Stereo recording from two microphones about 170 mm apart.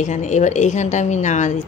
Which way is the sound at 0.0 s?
45° left (ahead or behind).